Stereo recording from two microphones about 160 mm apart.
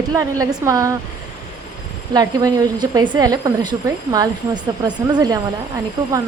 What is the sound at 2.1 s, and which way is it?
A woman's voice, 25° right (ahead or behind).